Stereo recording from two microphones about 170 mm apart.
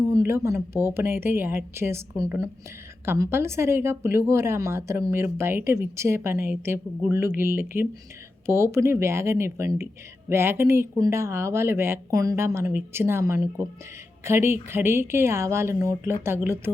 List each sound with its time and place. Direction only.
0.0 s speech: 15° right (ahead or behind)